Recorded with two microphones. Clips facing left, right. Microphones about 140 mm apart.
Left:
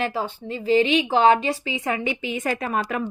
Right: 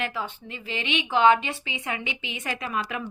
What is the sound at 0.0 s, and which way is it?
A woman's voice, 35° left (ahead or behind).